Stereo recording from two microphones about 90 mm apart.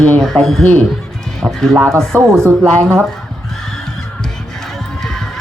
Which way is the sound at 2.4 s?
30° right (ahead or behind).